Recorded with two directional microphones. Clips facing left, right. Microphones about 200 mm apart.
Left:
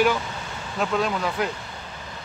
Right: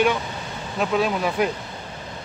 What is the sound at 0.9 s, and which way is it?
Speech, 15° right (ahead or behind).